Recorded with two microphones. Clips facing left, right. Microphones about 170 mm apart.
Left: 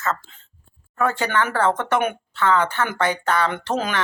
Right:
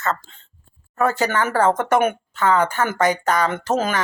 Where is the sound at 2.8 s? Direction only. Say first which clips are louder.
Right 3 dB; 45° right (ahead or behind).